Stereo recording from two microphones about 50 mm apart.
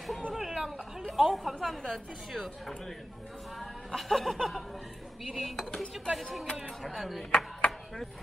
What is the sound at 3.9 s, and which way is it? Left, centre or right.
A woman's voice, centre.